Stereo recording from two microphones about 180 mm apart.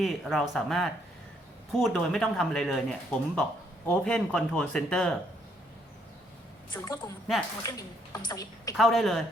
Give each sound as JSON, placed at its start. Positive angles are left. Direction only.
{"t": 0.0, "sound": "speech", "side_deg": 0}
{"t": 6.8, "sound": "a woman's voice", "side_deg": 20}
{"t": 8.7, "sound": "speech", "side_deg": 0}